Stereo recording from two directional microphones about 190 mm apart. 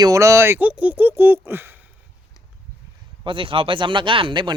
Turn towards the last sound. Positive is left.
turn(degrees=-25)  # may be behind; listen again after turning